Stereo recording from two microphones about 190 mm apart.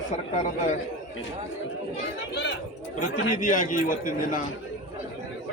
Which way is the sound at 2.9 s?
45° left (ahead or behind).